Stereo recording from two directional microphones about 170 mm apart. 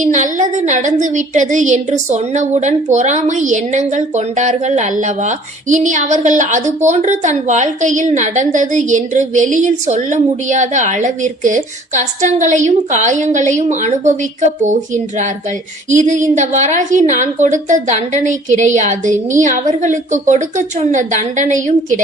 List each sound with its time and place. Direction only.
0.0 s a woman's voice: 45° right (ahead or behind)